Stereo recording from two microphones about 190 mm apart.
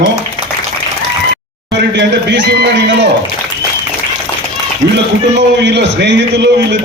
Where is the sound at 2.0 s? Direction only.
60° right (ahead or behind).